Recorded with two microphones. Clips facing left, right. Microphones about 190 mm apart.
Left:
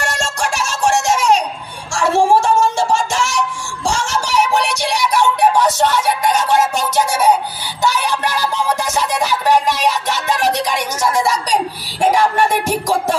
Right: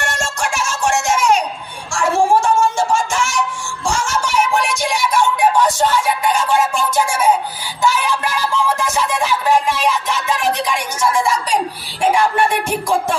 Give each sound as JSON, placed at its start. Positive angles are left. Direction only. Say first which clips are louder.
{"t": 0.0, "sound": "music", "louder": "left 1 dB", "side_deg": 40}
{"t": 6.7, "sound": "music", "louder": "left 1 dB", "side_deg": 40}
{"t": 12.0, "sound": "music", "louder": "left 1 dB", "side_deg": 40}